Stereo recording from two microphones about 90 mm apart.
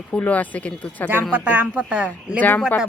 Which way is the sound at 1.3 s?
20° right (ahead or behind).